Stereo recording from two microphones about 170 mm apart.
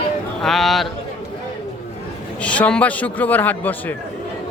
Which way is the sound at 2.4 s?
5° left (ahead or behind).